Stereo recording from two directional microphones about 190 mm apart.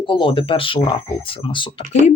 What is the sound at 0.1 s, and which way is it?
Speech, 25° left (ahead or behind).